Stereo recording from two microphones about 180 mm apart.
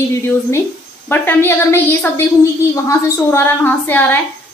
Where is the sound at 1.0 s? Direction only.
10° left (ahead or behind).